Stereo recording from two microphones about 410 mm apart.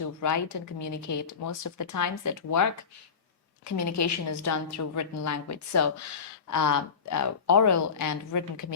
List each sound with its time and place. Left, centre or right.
0.0 s a woman's voice: left